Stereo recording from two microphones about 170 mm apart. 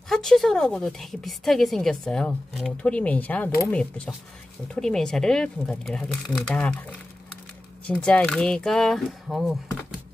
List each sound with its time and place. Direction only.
0.1 s a woman's voice: centre (ahead or behind)
8.0 s a woman's voice: 5° left (ahead or behind)